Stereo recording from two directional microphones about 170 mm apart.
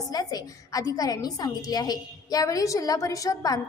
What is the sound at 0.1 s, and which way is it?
A woman's voice, 20° left (ahead or behind).